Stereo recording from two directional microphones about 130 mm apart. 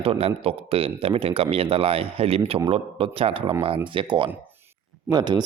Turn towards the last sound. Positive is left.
turn(degrees=-35)  # may be behind; listen again after turning